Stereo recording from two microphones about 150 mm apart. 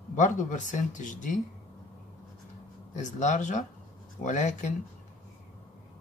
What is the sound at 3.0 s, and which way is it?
Speech, 55° left (ahead or behind).